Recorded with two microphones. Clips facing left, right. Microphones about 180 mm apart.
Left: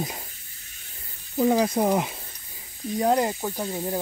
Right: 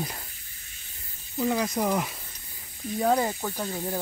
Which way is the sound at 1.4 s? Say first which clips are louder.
Left 5 dB; 30° left (ahead or behind).